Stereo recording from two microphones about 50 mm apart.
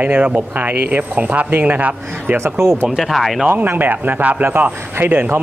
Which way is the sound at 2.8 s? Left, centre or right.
Centre.